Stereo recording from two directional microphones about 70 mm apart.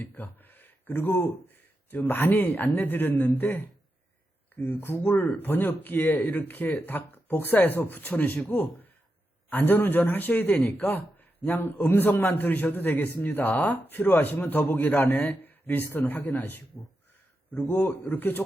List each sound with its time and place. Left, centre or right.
0.0 s speech: left
10.7 s speech: left
10.9 s a sound: left
11.5 s a man's voice: left